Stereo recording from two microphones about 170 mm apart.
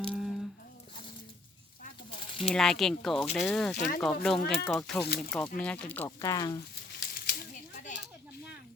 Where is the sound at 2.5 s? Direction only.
5° left (ahead or behind).